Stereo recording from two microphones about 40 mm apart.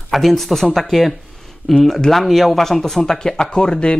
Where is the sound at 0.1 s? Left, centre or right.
Centre.